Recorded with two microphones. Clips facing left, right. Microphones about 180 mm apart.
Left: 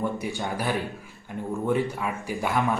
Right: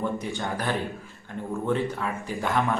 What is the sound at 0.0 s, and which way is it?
Speech, 15° left (ahead or behind).